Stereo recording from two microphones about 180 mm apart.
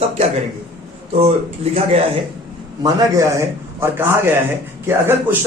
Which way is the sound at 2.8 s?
15° right (ahead or behind).